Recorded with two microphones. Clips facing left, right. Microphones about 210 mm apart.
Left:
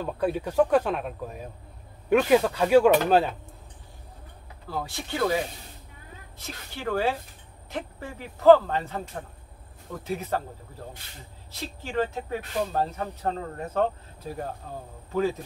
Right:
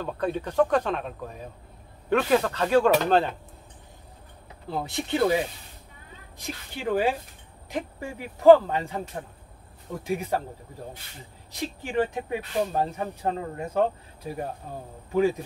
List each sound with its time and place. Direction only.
0.0 s speech: 5° left (ahead or behind)
4.6 s speech: 20° right (ahead or behind)
11.6 s speech: 15° right (ahead or behind)